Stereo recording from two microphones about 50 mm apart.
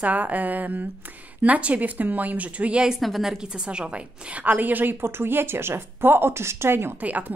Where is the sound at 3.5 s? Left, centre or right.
Centre.